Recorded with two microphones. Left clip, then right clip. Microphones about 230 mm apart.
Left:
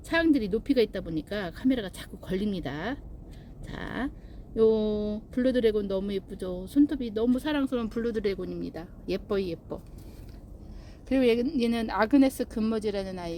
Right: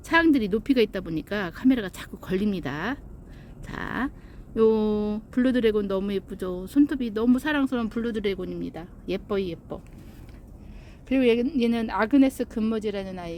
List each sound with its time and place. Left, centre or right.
0.1 s speech: right; by 9.7 s centre
11.1 s a woman's voice: centre